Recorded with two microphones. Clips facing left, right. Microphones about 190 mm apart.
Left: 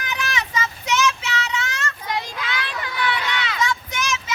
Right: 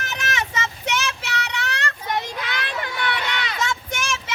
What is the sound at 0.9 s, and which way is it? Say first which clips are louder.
Child singing: left 6 dB; 60° right (ahead or behind).